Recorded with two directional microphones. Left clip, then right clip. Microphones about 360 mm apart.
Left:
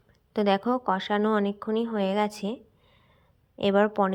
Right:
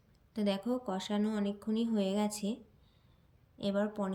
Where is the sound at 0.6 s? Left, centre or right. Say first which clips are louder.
Left 10 dB; left.